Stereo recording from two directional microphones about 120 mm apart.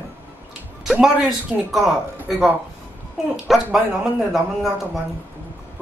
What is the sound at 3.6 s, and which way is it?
Speech, 5° right (ahead or behind).